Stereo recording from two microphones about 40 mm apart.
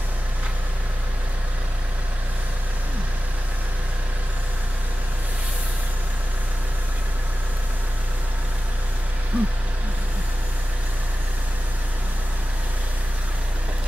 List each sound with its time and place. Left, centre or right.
9.3 s vehicle: right